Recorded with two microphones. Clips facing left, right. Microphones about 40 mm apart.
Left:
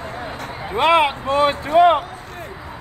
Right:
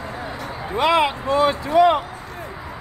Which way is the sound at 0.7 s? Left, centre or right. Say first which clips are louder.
Left 2 dB; left.